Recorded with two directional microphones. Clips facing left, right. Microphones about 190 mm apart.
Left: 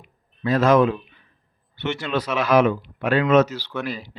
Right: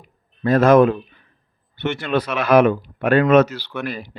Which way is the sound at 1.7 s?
55° right (ahead or behind).